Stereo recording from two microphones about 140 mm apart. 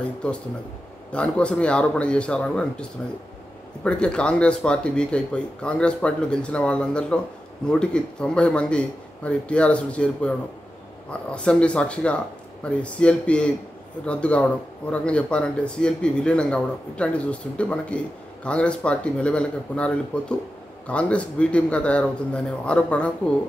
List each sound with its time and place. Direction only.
1.1 s speech: 10° left (ahead or behind)